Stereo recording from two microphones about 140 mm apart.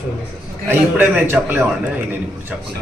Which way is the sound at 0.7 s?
15° right (ahead or behind).